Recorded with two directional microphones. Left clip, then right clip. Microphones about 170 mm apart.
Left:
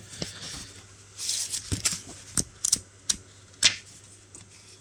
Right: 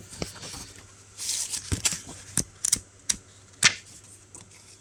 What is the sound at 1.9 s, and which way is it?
Shuffling cards, 45° right (ahead or behind).